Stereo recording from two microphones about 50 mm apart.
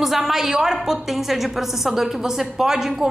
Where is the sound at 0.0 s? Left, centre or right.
Centre.